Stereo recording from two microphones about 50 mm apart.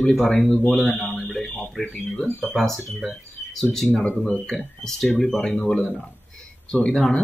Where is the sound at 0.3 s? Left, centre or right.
Centre.